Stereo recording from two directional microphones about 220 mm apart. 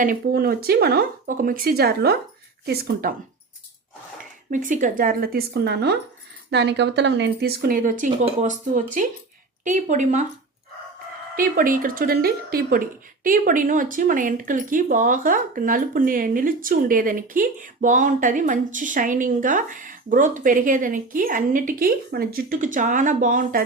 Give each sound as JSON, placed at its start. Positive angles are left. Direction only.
{"t": 0.0, "sound": "speech", "side_deg": -40}
{"t": 4.5, "sound": "speech", "side_deg": -35}
{"t": 11.3, "sound": "speech", "side_deg": -40}